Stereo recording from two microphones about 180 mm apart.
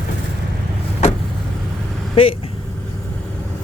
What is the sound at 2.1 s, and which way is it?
Speech, 30° left (ahead or behind).